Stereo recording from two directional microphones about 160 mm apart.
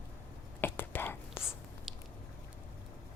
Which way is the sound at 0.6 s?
10° left (ahead or behind).